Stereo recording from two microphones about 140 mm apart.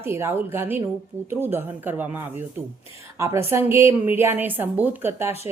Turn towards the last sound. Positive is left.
turn(degrees=-15)  # may be behind; listen again after turning